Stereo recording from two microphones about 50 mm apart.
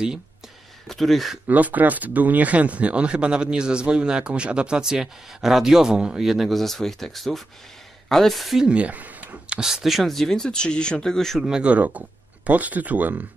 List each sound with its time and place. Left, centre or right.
0.8 s speech: centre
1.5 s speech: right; by 8.6 s centre
8.6 s speech: right
9.5 s speech: centre
11.6 s speech: right